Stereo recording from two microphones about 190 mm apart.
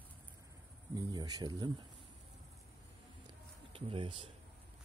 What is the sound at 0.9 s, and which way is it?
Speech, 20° right (ahead or behind).